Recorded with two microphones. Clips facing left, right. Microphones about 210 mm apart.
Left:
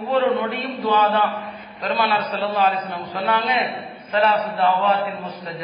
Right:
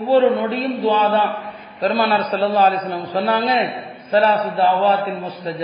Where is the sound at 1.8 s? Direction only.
40° right (ahead or behind).